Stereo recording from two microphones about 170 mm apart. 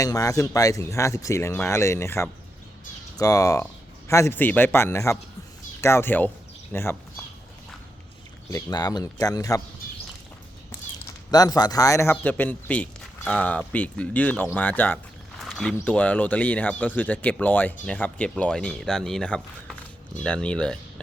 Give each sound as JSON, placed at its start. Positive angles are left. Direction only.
{"t": 0.0, "sound": "speech", "side_deg": 20}
{"t": 8.4, "sound": "speech", "side_deg": 20}
{"t": 11.3, "sound": "speech", "side_deg": 20}